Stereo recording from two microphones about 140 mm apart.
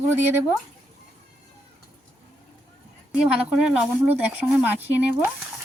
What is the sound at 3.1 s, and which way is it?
Speech, 5° right (ahead or behind).